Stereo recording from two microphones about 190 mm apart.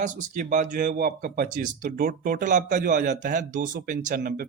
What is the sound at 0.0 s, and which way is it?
Speech, 45° right (ahead or behind).